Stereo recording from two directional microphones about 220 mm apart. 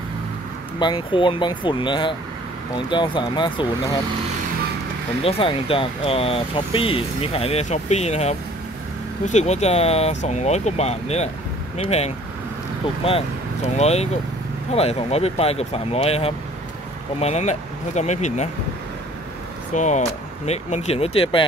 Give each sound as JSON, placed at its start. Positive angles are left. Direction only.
{"t": 0.7, "sound": "speech", "side_deg": 20}
{"t": 5.2, "sound": "speech", "side_deg": 25}
{"t": 13.0, "sound": "speech", "side_deg": 30}
{"t": 19.7, "sound": "speech", "side_deg": 35}